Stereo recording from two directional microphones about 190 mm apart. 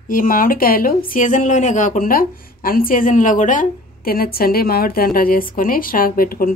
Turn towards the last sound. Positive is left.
turn(degrees=50)  # may be behind; listen again after turning